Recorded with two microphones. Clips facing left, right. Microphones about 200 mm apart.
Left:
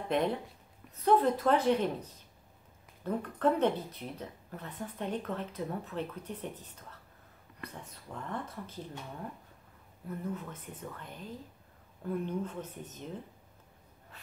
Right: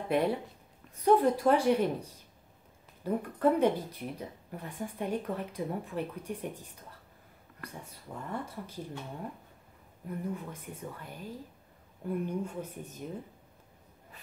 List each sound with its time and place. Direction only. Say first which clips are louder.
0.1 s speech: right 2 dB; 10° right (ahead or behind)
10.0 s speech: right 1 dB; 10° right (ahead or behind)